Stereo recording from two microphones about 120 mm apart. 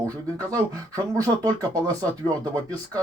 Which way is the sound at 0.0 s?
30° right (ahead or behind).